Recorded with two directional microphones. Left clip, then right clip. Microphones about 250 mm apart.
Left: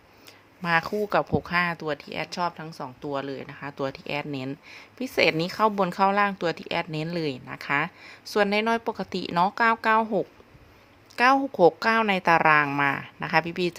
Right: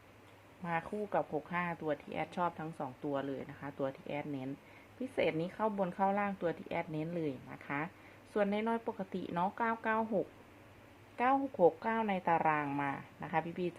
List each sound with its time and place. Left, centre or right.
0.6 s speech: left
11.2 s speech: left